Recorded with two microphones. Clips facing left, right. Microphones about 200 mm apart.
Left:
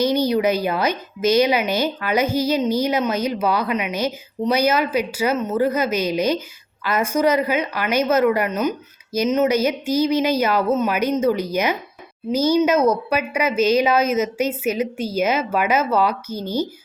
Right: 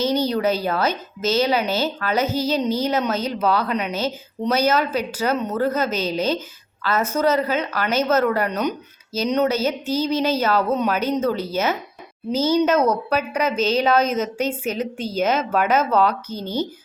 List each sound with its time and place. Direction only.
0.0 s a woman's voice: 10° left (ahead or behind)